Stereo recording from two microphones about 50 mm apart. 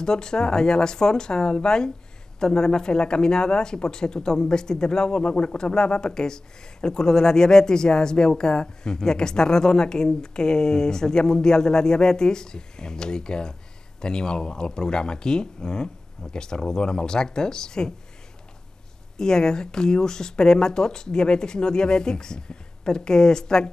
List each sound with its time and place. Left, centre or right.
0.0 s speech: centre
19.1 s speech: centre